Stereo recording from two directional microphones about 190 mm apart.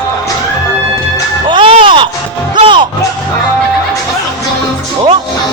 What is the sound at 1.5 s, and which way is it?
Music, 25° right (ahead or behind).